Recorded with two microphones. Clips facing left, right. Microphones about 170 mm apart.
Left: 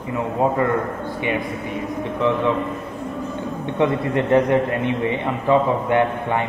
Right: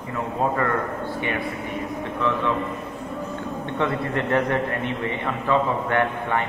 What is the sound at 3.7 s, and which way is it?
A man's voice, 15° left (ahead or behind).